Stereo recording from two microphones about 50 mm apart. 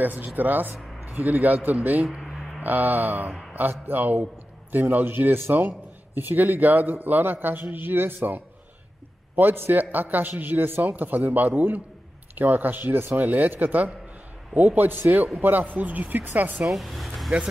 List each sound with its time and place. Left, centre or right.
0.0 s a man's voice: right
16.7 s speech: centre